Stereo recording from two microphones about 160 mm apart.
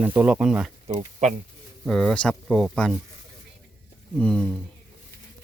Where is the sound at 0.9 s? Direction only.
50° right (ahead or behind).